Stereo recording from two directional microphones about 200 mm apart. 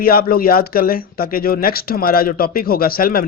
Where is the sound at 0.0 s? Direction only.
50° left (ahead or behind).